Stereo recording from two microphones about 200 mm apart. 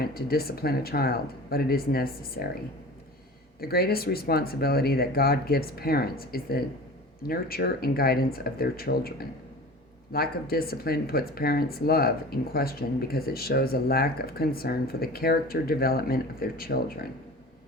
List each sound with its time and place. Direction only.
0.0 s speech: 50° left (ahead or behind)
3.6 s speech: 50° left (ahead or behind)